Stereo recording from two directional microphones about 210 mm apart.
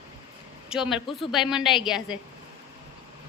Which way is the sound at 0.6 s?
5° right (ahead or behind).